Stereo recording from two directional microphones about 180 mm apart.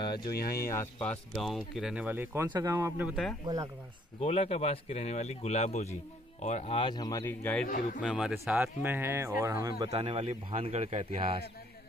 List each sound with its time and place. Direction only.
0.0 s a sound: 25° left (ahead or behind)
0.3 s speech: 60° left (ahead or behind)
0.6 s speech: 15° left (ahead or behind); by 3.7 s 20° right (ahead or behind)
4.2 s speech: 35° left (ahead or behind); by 7.6 s 10° left (ahead or behind)
7.6 s speech: 50° left (ahead or behind)
8.0 s speech: centre (ahead or behind); by 9.8 s 20° right (ahead or behind)
9.8 s a man's voice: 35° right (ahead or behind)